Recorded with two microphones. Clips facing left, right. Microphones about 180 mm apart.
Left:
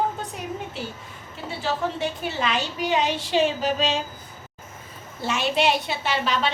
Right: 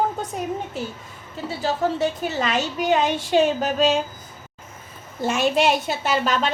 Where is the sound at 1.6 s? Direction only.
40° right (ahead or behind).